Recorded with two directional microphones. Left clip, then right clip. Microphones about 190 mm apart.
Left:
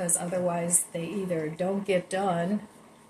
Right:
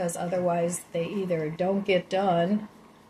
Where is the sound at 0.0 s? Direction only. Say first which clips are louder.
Right 2 dB; 35° right (ahead or behind).